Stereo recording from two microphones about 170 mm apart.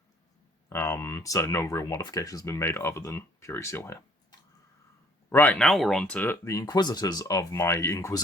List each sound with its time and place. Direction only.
0.7 s speech: 15° left (ahead or behind)